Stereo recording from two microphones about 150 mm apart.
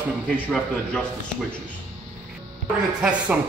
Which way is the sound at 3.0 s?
10° right (ahead or behind).